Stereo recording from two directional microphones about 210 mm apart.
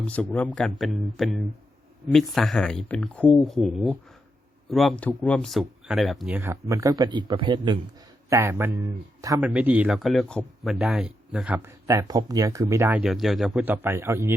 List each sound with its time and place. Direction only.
0.0 s speech: 5° left (ahead or behind); by 14.3 s 10° right (ahead or behind)